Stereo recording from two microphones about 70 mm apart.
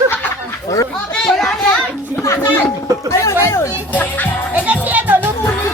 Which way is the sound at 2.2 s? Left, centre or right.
Left.